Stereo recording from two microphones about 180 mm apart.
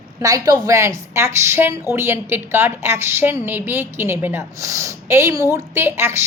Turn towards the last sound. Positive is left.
turn(degrees=-15)  # may be behind; listen again after turning